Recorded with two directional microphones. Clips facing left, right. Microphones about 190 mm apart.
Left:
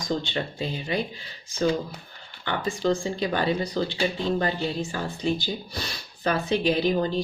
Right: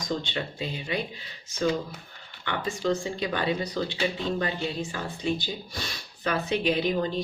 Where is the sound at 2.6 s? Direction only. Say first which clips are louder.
Left 3 dB; 30° left (ahead or behind).